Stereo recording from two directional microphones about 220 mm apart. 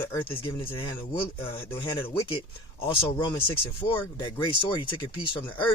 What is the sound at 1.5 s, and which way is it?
Speech, 10° left (ahead or behind).